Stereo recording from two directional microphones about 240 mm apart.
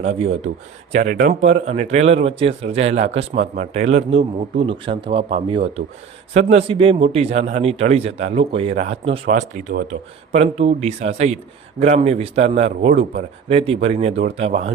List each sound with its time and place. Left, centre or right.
0.0 s speech: right
9.2 s speech: right